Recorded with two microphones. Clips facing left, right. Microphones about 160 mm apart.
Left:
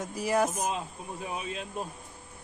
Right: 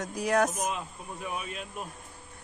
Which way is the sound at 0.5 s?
30° left (ahead or behind).